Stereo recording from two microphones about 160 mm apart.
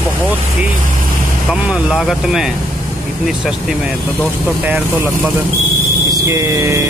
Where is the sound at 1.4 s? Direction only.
5° right (ahead or behind).